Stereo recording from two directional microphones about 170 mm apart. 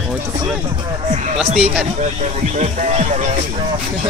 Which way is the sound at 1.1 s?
45° right (ahead or behind).